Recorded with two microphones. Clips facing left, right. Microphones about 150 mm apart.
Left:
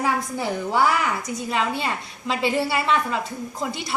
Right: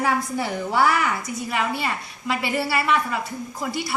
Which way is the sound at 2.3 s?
20° left (ahead or behind).